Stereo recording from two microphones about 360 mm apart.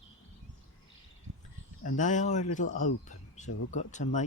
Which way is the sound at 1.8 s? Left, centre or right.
Left.